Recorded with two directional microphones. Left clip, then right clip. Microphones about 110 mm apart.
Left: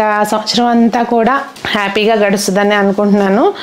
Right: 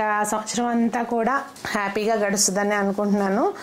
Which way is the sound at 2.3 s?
5° left (ahead or behind).